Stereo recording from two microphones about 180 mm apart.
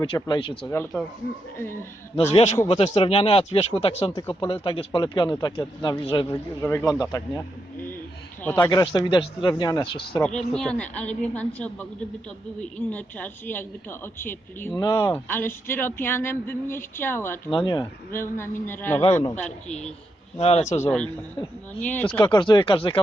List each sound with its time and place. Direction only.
0.0 s speech: 25° left (ahead or behind)
0.7 s speech: 10° left (ahead or behind)
2.3 s speech: 35° left (ahead or behind)
6.6 s speech: 15° left (ahead or behind)
8.4 s speech: 15° left (ahead or behind)
10.5 s speech: 5° left (ahead or behind)
17.5 s speech: 25° left (ahead or behind)
18.1 s speech: 15° left (ahead or behind)
20.4 s speech: 35° left (ahead or behind)
20.8 s speech: 5° left (ahead or behind)
22.2 s speech: 25° left (ahead or behind)